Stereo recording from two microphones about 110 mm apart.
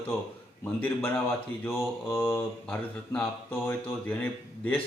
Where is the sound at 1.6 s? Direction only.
20° left (ahead or behind).